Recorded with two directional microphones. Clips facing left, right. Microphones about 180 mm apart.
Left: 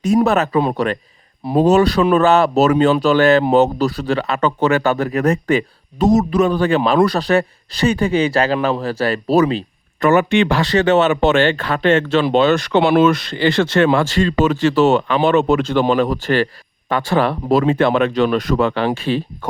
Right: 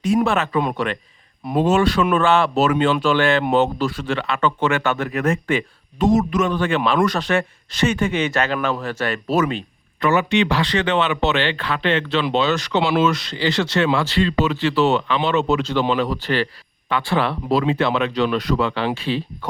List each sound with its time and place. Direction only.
0.0 s speech: 40° left (ahead or behind)